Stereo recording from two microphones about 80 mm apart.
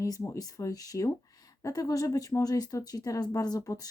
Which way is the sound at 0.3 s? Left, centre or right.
Left.